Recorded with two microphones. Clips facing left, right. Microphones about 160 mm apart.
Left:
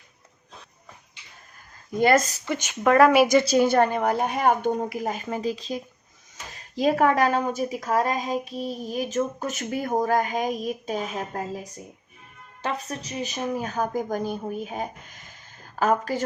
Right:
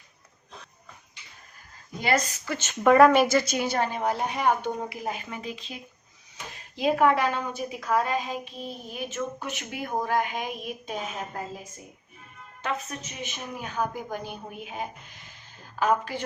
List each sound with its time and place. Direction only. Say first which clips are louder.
2.0 s speech: left 6 dB; 50° left (ahead or behind)
2.4 s speech: left 4 dB; 20° left (ahead or behind)
2.8 s speech: even; centre (ahead or behind)
3.4 s speech: left 9 dB; 35° left (ahead or behind)
3.7 s speech: left 6 dB; 50° left (ahead or behind)
12.6 s a woman's voice: left 2 dB; 35° left (ahead or behind)